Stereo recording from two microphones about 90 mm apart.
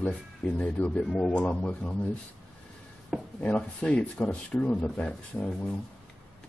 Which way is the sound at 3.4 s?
15° left (ahead or behind).